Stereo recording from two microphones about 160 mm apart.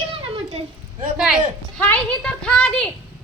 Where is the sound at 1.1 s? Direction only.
5° right (ahead or behind).